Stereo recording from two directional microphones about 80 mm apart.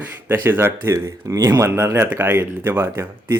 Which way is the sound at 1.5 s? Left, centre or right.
Right.